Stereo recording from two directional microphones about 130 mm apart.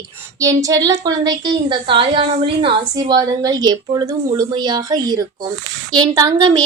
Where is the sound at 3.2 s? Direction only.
30° right (ahead or behind).